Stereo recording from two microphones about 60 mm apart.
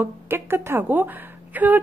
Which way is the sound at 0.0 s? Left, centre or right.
Right.